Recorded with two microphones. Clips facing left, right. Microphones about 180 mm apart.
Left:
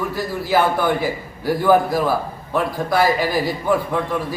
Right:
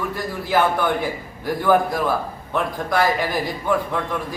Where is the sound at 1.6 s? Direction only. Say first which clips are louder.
Left 2 dB; 5° left (ahead or behind).